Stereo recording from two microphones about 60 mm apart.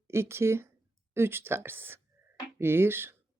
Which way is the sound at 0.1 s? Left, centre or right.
Right.